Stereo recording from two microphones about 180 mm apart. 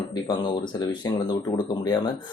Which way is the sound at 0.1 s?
25° left (ahead or behind).